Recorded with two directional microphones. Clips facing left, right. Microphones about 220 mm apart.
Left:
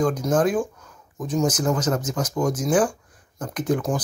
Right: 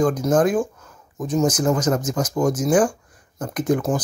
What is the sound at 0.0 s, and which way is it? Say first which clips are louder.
Speech: right 3 dB; 10° right (ahead or behind).